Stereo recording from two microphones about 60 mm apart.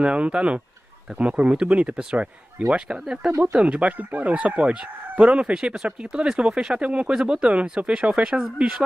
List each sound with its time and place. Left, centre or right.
0.0 s speech: centre
3.3 s speech: right
3.6 s speech: right